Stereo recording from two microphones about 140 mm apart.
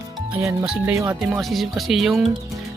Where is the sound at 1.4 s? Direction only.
Centre (ahead or behind).